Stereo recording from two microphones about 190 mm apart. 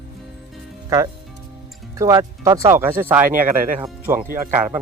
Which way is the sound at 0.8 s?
15° right (ahead or behind).